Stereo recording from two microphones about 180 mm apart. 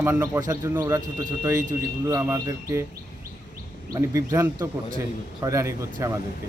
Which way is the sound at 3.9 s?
15° right (ahead or behind).